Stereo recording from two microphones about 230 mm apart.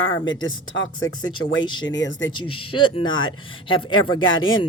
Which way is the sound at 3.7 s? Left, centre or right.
Left.